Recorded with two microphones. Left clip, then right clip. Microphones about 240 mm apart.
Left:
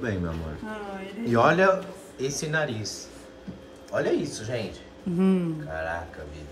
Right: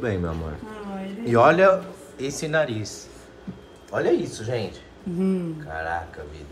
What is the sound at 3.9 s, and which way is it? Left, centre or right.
Speech, centre.